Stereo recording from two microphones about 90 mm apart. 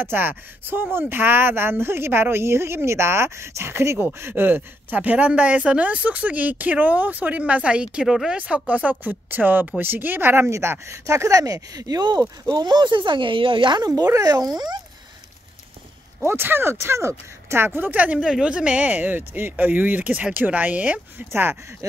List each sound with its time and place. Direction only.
0.0 s speech: 25° right (ahead or behind); by 14.0 s 50° right (ahead or behind)
14.0 s speech: 40° right (ahead or behind)
16.2 s speech: 25° right (ahead or behind)